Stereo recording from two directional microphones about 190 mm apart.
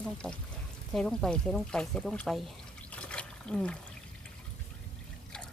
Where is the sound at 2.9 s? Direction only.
5° left (ahead or behind).